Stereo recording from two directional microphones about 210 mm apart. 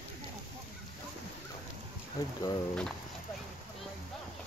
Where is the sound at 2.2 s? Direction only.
15° left (ahead or behind).